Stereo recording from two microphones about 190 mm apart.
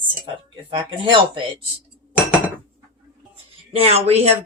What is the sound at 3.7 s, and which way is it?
Speech, 35° right (ahead or behind).